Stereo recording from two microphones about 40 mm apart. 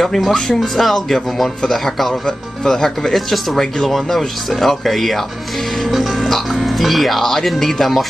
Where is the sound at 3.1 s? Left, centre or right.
Centre.